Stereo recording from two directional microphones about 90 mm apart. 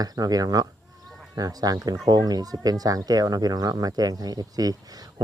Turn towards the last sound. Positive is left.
turn(degrees=-45)  # may be behind; listen again after turning